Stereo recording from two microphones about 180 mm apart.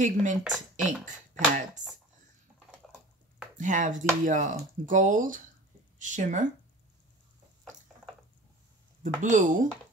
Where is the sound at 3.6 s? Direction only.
45° right (ahead or behind).